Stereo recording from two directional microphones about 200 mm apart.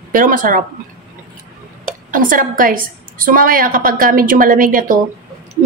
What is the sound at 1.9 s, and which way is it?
A woman's voice, 40° right (ahead or behind).